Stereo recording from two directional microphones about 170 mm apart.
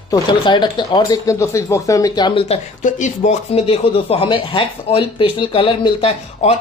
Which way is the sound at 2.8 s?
45° left (ahead or behind).